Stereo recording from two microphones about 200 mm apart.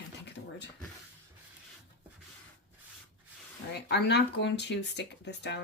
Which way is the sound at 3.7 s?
55° left (ahead or behind).